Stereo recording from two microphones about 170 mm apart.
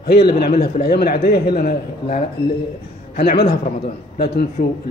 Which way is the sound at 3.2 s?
70° left (ahead or behind).